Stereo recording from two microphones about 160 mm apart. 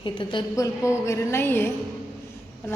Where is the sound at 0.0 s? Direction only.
30° left (ahead or behind).